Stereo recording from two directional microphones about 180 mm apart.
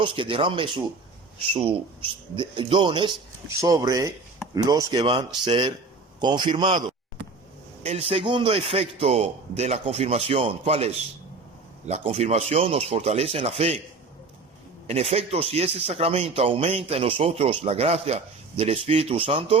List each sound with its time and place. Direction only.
0.0 s speech: 30° right (ahead or behind)
14.8 s speech: 35° right (ahead or behind)